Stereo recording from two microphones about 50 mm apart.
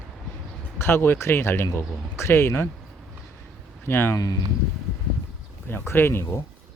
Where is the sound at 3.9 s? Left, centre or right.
Left.